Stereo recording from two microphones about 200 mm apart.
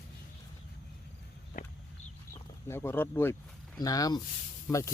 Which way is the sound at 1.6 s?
40° left (ahead or behind).